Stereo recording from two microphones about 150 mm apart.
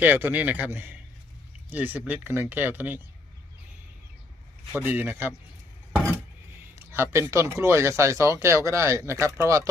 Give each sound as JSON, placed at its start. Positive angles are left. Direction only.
{"t": 0.0, "sound": "speech", "side_deg": -10}
{"t": 4.7, "sound": "speech", "side_deg": -10}
{"t": 6.9, "sound": "speech", "side_deg": -15}